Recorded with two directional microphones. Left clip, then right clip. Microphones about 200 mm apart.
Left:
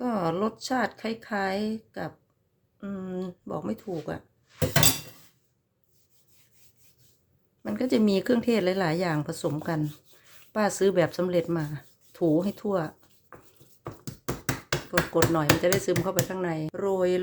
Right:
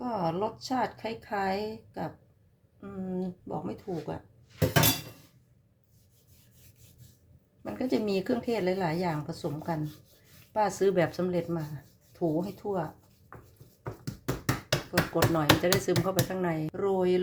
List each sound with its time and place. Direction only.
0.0 s speech: 35° left (ahead or behind)
7.6 s speech: 25° left (ahead or behind)
12.1 s speech: 45° left (ahead or behind)
15.1 s speech: 20° left (ahead or behind)